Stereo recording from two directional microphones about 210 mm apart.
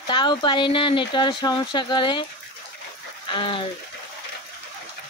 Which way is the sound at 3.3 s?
25° left (ahead or behind).